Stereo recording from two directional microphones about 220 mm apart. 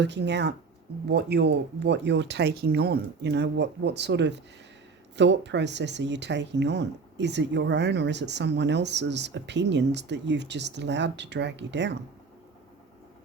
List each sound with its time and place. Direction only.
0.0 s speech: 50° right (ahead or behind)